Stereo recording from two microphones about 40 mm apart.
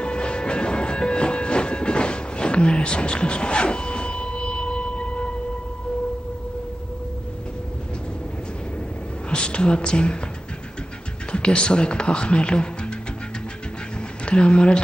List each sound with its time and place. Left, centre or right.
0.0 s train: left
9.3 s speech: left
11.3 s speech: left
14.2 s speech: left